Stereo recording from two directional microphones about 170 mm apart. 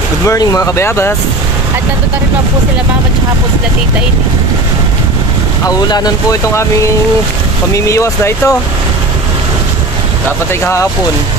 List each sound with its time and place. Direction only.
0.3 s speech: 20° left (ahead or behind)
5.7 s speech: 25° left (ahead or behind)
7.7 s speech: 15° left (ahead or behind)
10.5 s speech: 15° left (ahead or behind)